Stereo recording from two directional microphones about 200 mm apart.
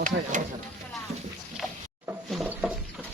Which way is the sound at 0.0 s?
40° right (ahead or behind).